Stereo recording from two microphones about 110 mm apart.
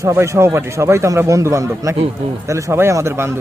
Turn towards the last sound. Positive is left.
turn(degrees=-25)  # may be behind; listen again after turning